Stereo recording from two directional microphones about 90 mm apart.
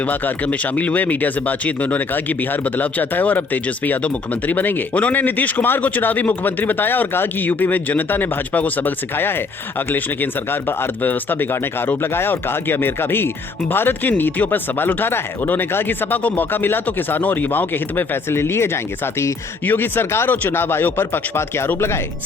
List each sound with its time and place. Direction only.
0.0 s speech: 20° left (ahead or behind)